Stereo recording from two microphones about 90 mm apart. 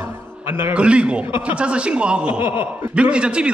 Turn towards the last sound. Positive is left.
turn(degrees=-10)  # may be behind; listen again after turning